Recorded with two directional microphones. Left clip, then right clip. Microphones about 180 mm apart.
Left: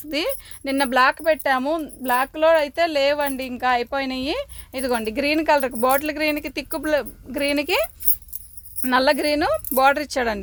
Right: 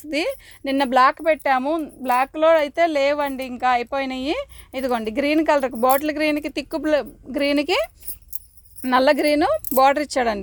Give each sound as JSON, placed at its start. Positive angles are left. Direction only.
{"t": 0.0, "sound": "speech", "side_deg": -25}